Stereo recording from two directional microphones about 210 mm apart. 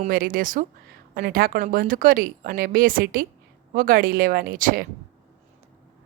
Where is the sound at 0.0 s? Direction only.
40° right (ahead or behind).